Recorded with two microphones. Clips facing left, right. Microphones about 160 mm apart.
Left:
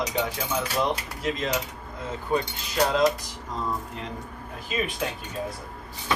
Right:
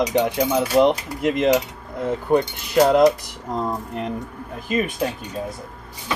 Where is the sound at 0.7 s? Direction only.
70° right (ahead or behind).